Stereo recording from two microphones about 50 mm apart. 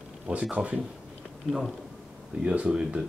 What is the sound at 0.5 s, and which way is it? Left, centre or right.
Speech, right.